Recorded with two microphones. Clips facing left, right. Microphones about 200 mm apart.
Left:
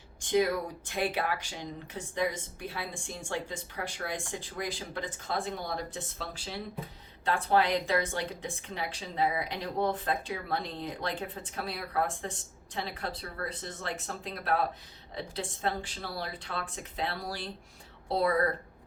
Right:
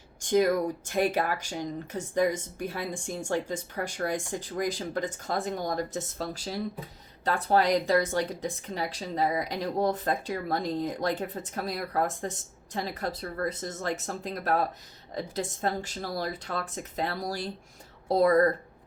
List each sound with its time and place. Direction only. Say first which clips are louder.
0.2 s a woman's voice: right 4 dB; 45° right (ahead or behind)